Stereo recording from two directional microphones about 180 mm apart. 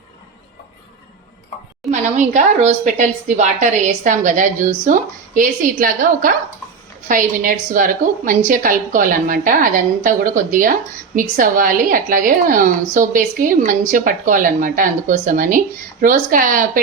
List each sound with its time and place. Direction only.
1.9 s a woman's voice: 40° right (ahead or behind)